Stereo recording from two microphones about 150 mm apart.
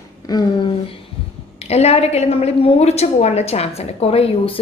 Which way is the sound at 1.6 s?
45° left (ahead or behind).